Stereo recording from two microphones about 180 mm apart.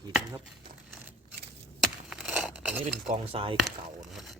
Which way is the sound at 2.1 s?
5° right (ahead or behind).